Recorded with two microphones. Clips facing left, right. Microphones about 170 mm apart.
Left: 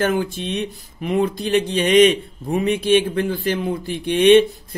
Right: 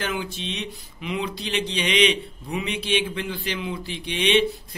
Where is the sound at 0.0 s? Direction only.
50° left (ahead or behind).